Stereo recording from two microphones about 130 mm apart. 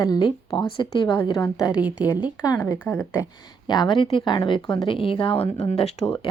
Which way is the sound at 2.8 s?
15° left (ahead or behind).